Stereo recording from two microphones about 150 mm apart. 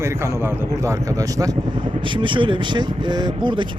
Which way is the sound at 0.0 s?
20° right (ahead or behind).